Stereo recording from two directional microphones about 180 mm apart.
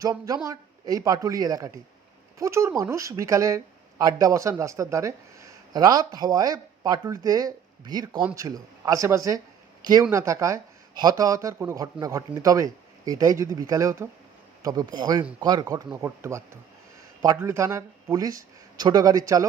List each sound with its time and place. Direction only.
0.0 s speech: 20° right (ahead or behind)